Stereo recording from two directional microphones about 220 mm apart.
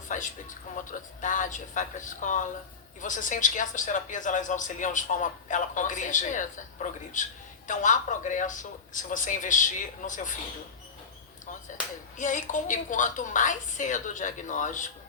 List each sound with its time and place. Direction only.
0.1 s a sound: 35° left (ahead or behind)
0.8 s speech: 35° left (ahead or behind)
12.1 s speech: 35° left (ahead or behind)